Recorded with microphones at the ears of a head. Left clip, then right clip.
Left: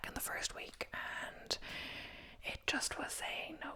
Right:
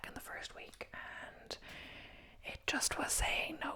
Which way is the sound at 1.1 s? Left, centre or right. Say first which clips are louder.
Left 6 dB; left.